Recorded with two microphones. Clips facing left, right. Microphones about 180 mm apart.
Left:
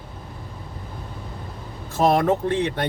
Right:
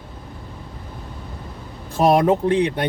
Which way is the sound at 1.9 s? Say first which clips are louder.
Right 3 dB; 15° right (ahead or behind).